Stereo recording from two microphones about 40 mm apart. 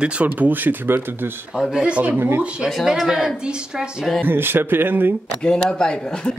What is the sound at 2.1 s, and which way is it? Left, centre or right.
Speech, right.